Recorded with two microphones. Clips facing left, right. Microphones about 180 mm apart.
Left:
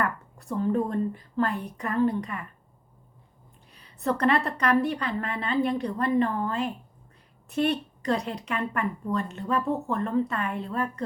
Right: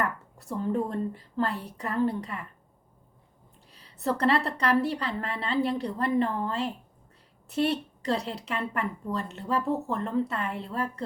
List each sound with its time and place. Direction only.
0.5 s a woman's voice: 30° right (ahead or behind)
3.7 s a sound: 30° right (ahead or behind)
4.0 s a woman's voice: 30° right (ahead or behind)